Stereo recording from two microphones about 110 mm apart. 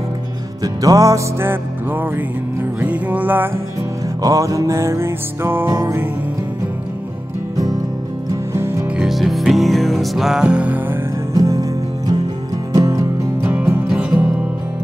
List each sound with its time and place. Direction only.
0.6 s music: 30° right (ahead or behind); by 3.4 s 15° right (ahead or behind)
4.2 s music: 30° right (ahead or behind)
8.5 s music: 25° right (ahead or behind)
8.9 s music: centre (ahead or behind)
11.3 s music: 30° right (ahead or behind)
12.7 s music: 30° right (ahead or behind)
13.8 s music: 5° right (ahead or behind)